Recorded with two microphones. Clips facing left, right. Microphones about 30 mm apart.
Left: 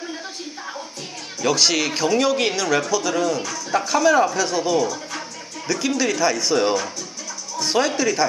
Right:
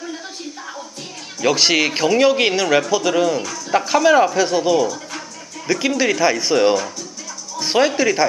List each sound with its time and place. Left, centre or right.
1.4 s speech: centre
4.8 s speech: centre
5.7 s speech: centre